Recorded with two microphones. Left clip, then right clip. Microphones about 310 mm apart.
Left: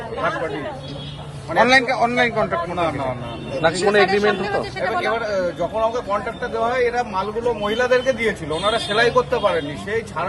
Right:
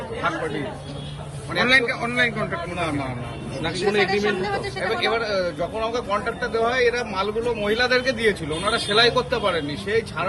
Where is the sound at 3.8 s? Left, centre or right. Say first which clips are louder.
Left 3 dB; left.